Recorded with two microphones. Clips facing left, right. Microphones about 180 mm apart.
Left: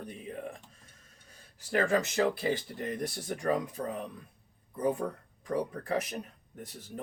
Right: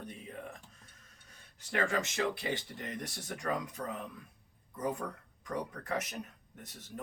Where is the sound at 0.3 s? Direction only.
35° left (ahead or behind).